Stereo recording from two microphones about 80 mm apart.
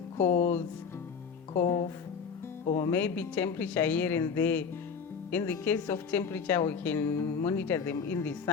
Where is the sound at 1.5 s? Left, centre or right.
Left.